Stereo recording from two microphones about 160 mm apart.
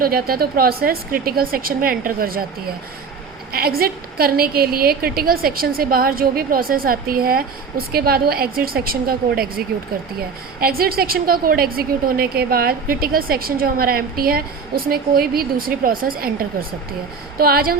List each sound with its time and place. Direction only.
0.0 s a woman's voice: 70° right (ahead or behind)
3.5 s a woman's voice: 70° right (ahead or behind)
10.6 s a woman's voice: 70° right (ahead or behind)